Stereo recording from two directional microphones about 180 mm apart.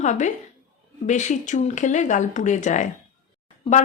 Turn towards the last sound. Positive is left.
turn(degrees=30)  # may be behind; listen again after turning